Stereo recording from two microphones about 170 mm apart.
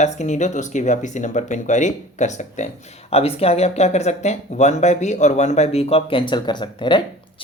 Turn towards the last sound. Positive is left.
turn(degrees=25)  # may be behind; listen again after turning